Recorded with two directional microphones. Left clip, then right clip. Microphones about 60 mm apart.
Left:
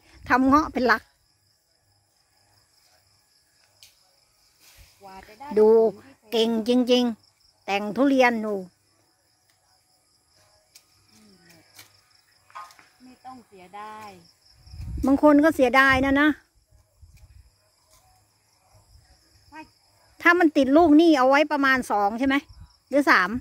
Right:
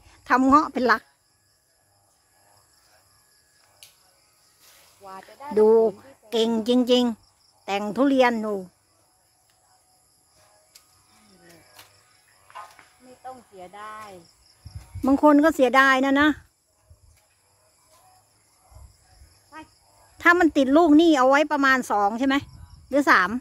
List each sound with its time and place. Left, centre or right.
0.0 s a sound: centre
0.5 s a woman's voice: left
5.5 s speech: left
6.6 s a woman's voice: centre
8.4 s speech: centre
13.7 s cricket: right
15.0 s speech: centre
20.2 s speech: centre